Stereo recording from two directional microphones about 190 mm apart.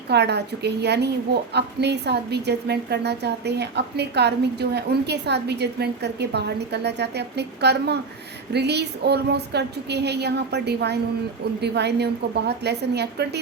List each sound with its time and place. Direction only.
0.1 s a woman's voice: 60° right (ahead or behind)